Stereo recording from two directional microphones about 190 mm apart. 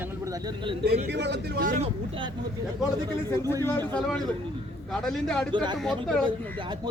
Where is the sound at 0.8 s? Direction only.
60° right (ahead or behind).